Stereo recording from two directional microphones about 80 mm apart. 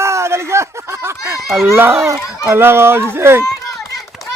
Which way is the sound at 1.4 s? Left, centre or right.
Centre.